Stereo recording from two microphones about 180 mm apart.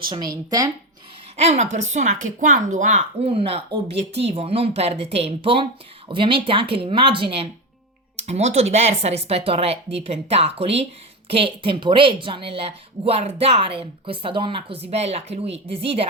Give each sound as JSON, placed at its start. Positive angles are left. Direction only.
{"t": 0.1, "sound": "a woman's voice", "side_deg": -20}
{"t": 1.4, "sound": "a woman's voice", "side_deg": -35}